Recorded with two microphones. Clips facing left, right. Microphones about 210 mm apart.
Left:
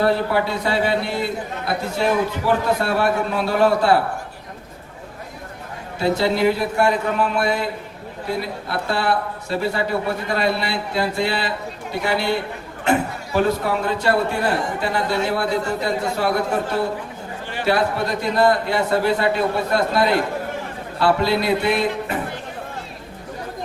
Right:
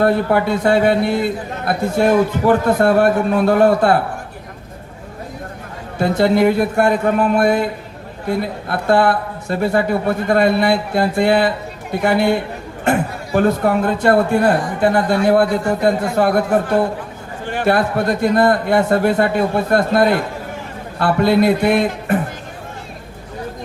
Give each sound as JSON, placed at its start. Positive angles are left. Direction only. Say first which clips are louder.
{"t": 0.0, "sound": "a man's voice", "louder": "right 4 dB", "side_deg": -50}
{"t": 6.0, "sound": "a man's voice", "louder": "right 5 dB", "side_deg": -50}